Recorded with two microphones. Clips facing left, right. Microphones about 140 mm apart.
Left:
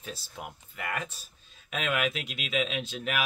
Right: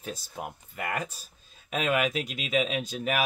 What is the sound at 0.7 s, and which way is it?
Speech, 40° right (ahead or behind).